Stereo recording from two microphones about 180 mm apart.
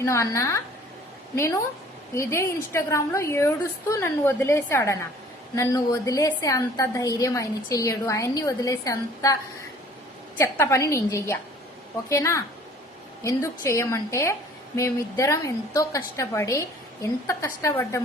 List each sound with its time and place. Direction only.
0.0 s a woman's voice: 15° left (ahead or behind)
2.1 s a woman's voice: 15° left (ahead or behind)